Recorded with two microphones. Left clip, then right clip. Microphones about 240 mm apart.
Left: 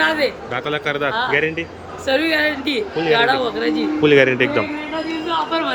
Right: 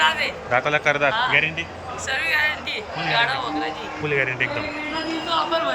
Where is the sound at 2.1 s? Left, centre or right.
Left.